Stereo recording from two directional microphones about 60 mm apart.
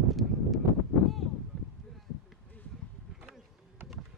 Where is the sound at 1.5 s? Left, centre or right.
Centre.